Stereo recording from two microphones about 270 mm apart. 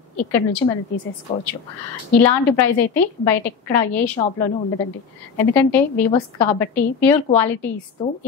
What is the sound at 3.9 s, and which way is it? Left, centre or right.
Speech, centre.